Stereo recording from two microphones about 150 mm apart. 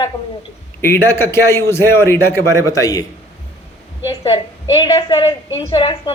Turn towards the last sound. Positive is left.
turn(degrees=35)  # may be behind; listen again after turning